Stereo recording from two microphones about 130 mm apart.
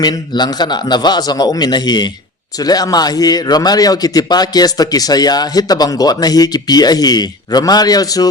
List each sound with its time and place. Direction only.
0.0 s a man's voice: 30° left (ahead or behind)